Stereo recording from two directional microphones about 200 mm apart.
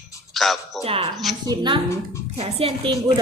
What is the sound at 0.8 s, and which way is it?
Speech, 30° right (ahead or behind).